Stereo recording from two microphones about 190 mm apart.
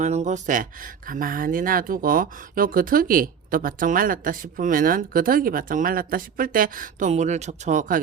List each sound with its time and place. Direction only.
0.0 s speech: 40° right (ahead or behind)